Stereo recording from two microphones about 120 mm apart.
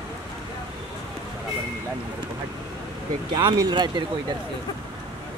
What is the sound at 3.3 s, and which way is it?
Speech, 40° right (ahead or behind).